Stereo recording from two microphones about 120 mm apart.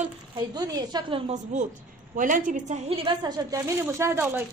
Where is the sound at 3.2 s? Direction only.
30° right (ahead or behind).